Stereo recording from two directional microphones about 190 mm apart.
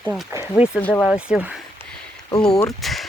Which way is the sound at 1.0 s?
5° right (ahead or behind).